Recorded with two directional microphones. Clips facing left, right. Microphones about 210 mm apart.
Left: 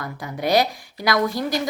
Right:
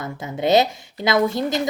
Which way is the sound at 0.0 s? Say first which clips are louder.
Right 3 dB; 25° right (ahead or behind).